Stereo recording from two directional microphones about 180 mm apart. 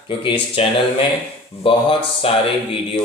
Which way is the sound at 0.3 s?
30° left (ahead or behind).